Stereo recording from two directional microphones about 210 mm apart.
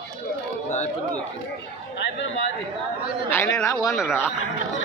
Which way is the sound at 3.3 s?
10° left (ahead or behind).